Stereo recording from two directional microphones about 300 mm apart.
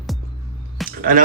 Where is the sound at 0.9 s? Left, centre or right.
Right.